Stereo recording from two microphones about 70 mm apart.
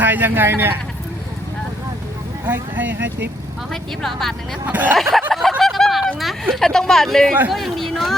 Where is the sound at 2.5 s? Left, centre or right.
Right.